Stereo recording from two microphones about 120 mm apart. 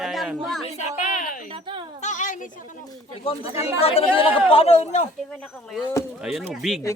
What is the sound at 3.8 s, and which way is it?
A man's voice, 55° left (ahead or behind).